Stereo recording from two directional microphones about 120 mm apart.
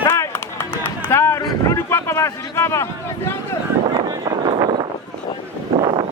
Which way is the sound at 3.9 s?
40° right (ahead or behind).